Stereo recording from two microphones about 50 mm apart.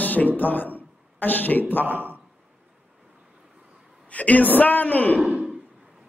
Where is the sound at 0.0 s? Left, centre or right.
Left.